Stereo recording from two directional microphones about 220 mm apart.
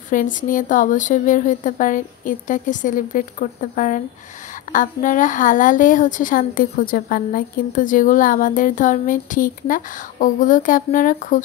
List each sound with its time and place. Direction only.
0.1 s a woman's voice: 35° left (ahead or behind)